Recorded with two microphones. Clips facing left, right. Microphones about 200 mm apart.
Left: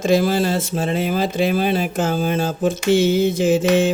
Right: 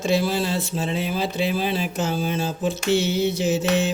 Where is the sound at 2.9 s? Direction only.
90° left.